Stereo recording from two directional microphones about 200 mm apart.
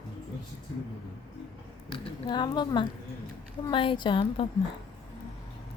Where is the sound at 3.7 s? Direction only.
25° left (ahead or behind).